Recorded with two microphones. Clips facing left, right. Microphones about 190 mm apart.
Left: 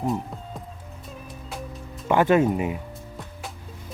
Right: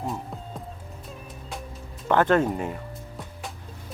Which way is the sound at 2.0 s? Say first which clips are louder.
Left 2 dB; 10° left (ahead or behind).